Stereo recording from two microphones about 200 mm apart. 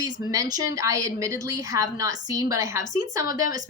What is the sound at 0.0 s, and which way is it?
Speech, 20° right (ahead or behind).